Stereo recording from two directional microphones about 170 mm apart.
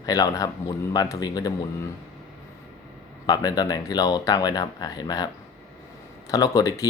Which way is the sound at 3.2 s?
25° left (ahead or behind).